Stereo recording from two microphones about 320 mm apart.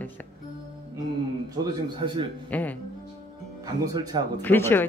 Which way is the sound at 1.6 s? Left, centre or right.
Centre.